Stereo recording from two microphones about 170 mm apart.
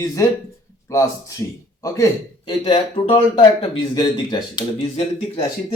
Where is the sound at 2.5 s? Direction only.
35° left (ahead or behind).